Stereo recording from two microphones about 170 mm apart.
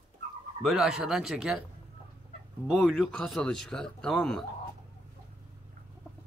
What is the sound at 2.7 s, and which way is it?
A man's voice, centre (ahead or behind).